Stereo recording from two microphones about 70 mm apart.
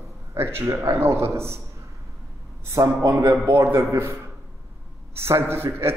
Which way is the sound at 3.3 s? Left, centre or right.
Right.